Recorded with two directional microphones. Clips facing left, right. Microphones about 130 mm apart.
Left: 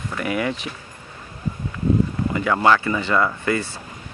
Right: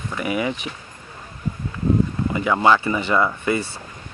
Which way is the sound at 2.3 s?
10° right (ahead or behind).